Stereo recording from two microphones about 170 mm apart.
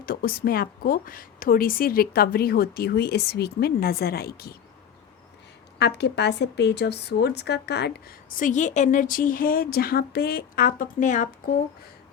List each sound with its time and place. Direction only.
0.0 s a woman's voice: 60° left (ahead or behind)
5.8 s a woman's voice: 80° left
8.3 s a woman's voice: 50° left (ahead or behind)